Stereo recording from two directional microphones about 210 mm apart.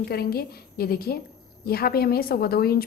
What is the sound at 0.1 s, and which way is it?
A woman's voice, 50° left (ahead or behind).